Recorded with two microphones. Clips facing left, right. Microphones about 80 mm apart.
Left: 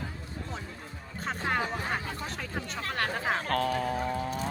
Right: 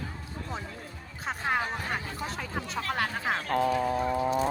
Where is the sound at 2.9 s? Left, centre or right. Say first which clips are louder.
Even; centre.